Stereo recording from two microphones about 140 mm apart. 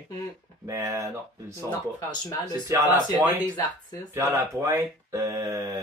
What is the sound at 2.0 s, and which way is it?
Speech, 25° left (ahead or behind).